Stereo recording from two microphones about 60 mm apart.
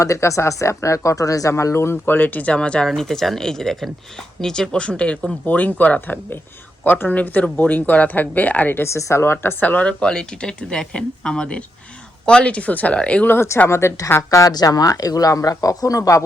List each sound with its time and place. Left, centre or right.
0.0 s speech: left
8.8 s speech: left
9.6 s speech: left
10.0 s speech: centre
13.2 s speech: left
13.7 s speech: left
14.2 s speech: left